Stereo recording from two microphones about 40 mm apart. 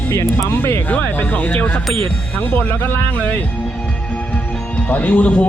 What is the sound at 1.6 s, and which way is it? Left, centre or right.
Speech, left.